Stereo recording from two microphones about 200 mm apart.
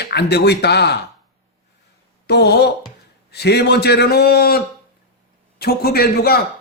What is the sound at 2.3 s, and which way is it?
A man's voice, 55° left (ahead or behind).